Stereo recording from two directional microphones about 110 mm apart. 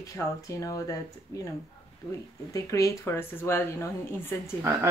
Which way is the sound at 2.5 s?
30° left (ahead or behind).